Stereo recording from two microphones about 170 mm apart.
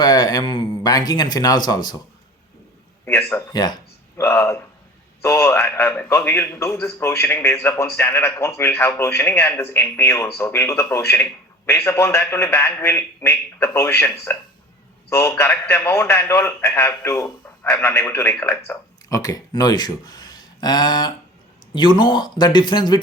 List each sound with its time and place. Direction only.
0.0 s speech: 25° left (ahead or behind)
3.1 s a man's voice: 15° left (ahead or behind)
4.2 s a man's voice: 15° left (ahead or behind)